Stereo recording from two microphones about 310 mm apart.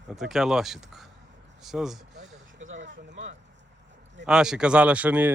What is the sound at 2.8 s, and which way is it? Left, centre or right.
Speech, right.